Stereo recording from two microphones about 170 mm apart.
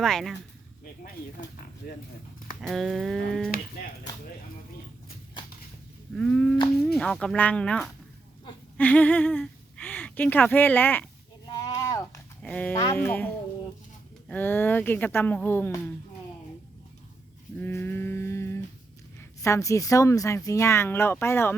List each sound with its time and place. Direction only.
0.0 s speech: centre (ahead or behind)
2.6 s speech: centre (ahead or behind)
6.1 s speech: 5° left (ahead or behind)
11.5 s a sound: 20° left (ahead or behind)
12.4 s speech: 10° left (ahead or behind)
17.6 s a sound: 15° left (ahead or behind)
19.4 s speech: 20° left (ahead or behind)